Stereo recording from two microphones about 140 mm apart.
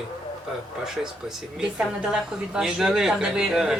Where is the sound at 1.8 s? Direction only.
5° right (ahead or behind).